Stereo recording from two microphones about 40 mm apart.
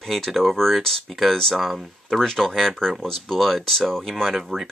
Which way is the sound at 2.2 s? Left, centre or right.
Centre.